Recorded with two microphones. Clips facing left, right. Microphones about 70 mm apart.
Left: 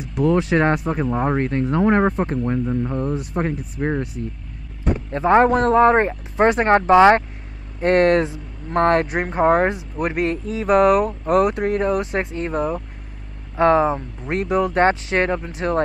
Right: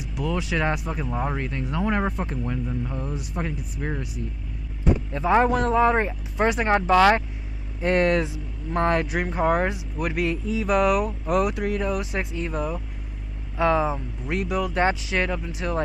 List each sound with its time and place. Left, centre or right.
0.2 s speech: left
4.8 s a sound: left
5.4 s speech: left
6.9 s speech: left
7.8 s speech: left